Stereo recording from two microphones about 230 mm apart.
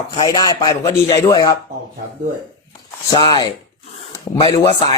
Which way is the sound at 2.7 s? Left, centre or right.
Centre.